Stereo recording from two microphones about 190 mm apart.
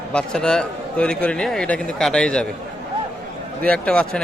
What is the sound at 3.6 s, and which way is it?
Speech, 5° left (ahead or behind).